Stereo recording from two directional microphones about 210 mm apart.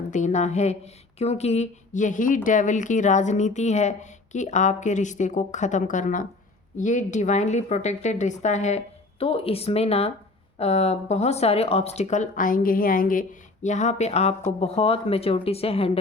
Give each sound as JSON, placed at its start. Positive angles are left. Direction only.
{"t": 0.1, "sound": "speech", "side_deg": 35}